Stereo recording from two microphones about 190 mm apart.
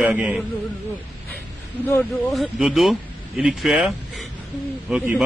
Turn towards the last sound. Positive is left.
turn(degrees=-5)  # may be behind; listen again after turning